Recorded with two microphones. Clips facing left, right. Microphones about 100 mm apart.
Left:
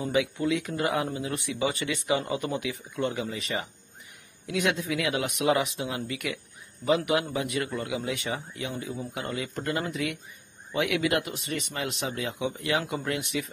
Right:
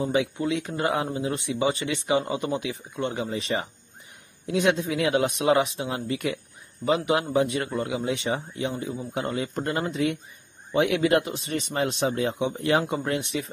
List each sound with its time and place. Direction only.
0.0 s speech: 30° right (ahead or behind)